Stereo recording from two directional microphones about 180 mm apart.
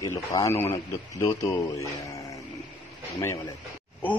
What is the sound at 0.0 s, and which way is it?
Speech, 20° left (ahead or behind).